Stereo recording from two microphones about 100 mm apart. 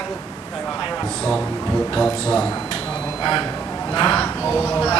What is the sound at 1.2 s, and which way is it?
Speech, 10° left (ahead or behind).